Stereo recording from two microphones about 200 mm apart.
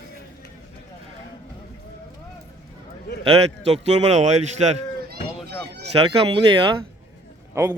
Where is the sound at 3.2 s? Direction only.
30° right (ahead or behind).